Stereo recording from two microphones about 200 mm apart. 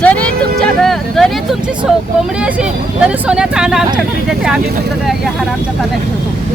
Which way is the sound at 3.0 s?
5° right (ahead or behind).